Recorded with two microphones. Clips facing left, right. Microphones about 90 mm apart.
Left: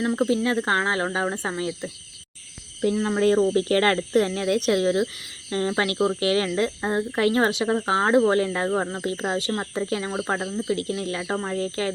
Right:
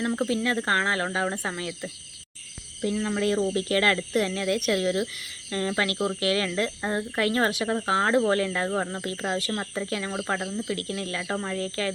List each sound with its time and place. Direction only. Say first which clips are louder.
0.0 s speech: left 4 dB; 10° left (ahead or behind); by 11.9 s 30° left (ahead or behind)